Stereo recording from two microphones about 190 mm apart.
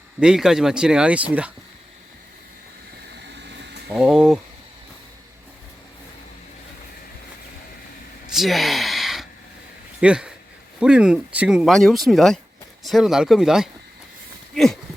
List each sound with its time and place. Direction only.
0.2 s speech: 5° right (ahead or behind)
3.3 s a sound: 65° right (ahead or behind)
3.9 s speech: 5° right (ahead or behind)
8.3 s gasp: centre (ahead or behind)
10.0 s speech: 5° right (ahead or behind)
14.5 s a sound: centre (ahead or behind)